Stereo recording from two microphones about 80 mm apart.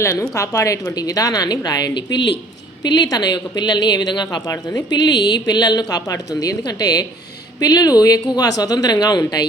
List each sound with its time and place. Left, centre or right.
0.0 s a woman's voice: left